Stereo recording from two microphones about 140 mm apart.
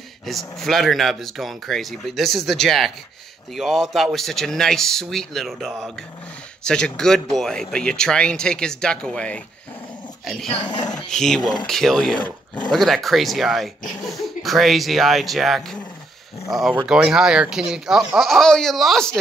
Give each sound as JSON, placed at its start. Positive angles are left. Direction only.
{"t": 0.3, "sound": "speech", "side_deg": 0}
{"t": 10.6, "sound": "speech", "side_deg": 35}
{"t": 11.1, "sound": "speech", "side_deg": 5}
{"t": 12.2, "sound": "speech", "side_deg": 30}
{"t": 12.7, "sound": "speech", "side_deg": 0}